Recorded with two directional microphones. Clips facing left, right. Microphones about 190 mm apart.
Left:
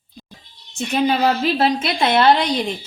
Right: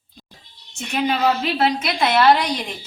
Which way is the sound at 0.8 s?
40° left (ahead or behind).